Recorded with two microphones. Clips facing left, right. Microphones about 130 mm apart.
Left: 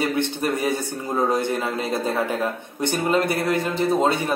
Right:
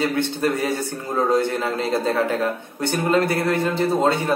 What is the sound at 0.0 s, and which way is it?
Speech, 15° left (ahead or behind).